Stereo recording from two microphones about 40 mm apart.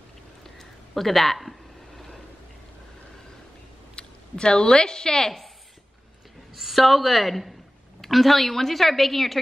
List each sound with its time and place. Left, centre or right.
0.6 s a sound: centre
3.9 s a woman's voice: centre
6.5 s a woman's voice: centre